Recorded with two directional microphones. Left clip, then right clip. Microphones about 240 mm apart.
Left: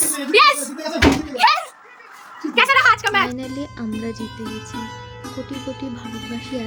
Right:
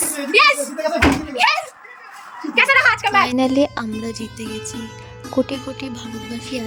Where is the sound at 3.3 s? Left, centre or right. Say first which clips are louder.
Right 12 dB; right.